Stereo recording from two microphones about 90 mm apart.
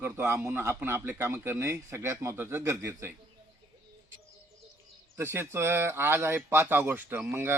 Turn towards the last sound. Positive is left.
turn(degrees=-25)  # may be behind; listen again after turning